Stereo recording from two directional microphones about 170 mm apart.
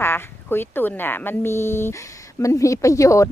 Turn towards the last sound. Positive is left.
turn(degrees=20)  # may be behind; listen again after turning